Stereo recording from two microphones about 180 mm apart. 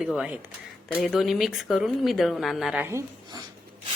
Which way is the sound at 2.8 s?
20° right (ahead or behind).